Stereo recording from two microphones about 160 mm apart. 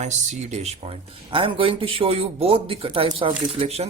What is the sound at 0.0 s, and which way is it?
Speech, 45° right (ahead or behind).